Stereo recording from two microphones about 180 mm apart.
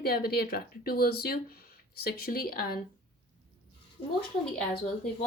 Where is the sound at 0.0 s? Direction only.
60° left (ahead or behind).